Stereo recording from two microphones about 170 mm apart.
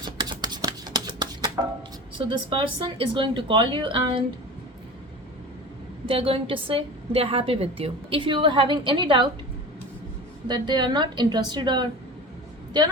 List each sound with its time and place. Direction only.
0.0 s a sound: 25° right (ahead or behind)
2.1 s speech: 30° right (ahead or behind)
6.1 s a woman's voice: 35° right (ahead or behind)
10.5 s speech: 25° right (ahead or behind)